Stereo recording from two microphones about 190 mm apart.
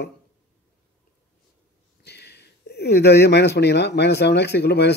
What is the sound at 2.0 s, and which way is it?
Speech, 60° left (ahead or behind).